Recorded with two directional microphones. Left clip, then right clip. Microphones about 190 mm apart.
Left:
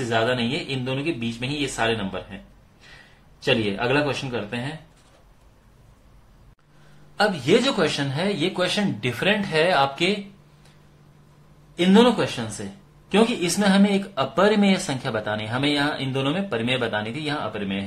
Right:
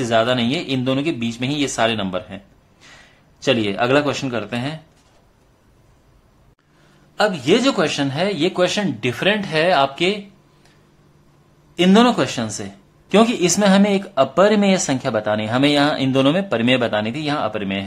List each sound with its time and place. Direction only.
0.0 s a man's voice: 45° right (ahead or behind)
7.2 s a man's voice: 25° right (ahead or behind)
11.7 s speech: 40° right (ahead or behind)